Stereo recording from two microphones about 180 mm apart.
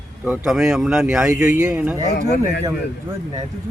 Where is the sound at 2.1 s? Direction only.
65° left (ahead or behind).